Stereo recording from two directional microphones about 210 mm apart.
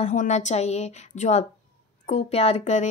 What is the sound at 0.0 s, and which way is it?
A woman's voice, 35° left (ahead or behind).